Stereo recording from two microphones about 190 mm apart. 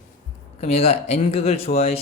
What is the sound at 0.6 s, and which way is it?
Speech, 30° left (ahead or behind).